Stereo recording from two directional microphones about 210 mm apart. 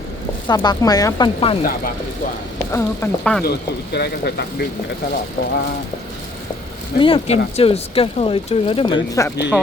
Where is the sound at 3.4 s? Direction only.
50° left (ahead or behind).